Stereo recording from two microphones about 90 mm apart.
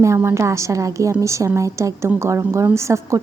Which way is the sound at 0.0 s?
30° right (ahead or behind).